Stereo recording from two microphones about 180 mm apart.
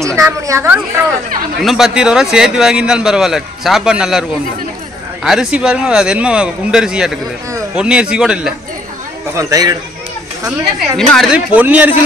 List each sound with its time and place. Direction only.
0.0 s a woman's voice: 15° right (ahead or behind)
1.6 s a man's voice: centre (ahead or behind)
9.3 s a man's voice: 20° right (ahead or behind)
11.0 s speech: centre (ahead or behind)